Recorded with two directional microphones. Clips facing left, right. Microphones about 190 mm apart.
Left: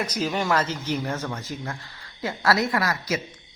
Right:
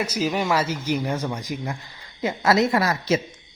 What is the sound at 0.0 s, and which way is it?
A woman's voice, 5° right (ahead or behind).